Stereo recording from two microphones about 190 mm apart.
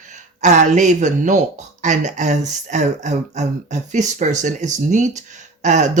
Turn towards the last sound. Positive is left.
turn(degrees=-40)  # may be behind; listen again after turning